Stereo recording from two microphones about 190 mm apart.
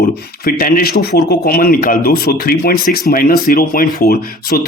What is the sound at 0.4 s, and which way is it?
Speech, 50° left (ahead or behind).